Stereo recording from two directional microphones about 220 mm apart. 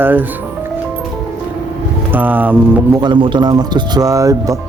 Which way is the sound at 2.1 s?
10° right (ahead or behind).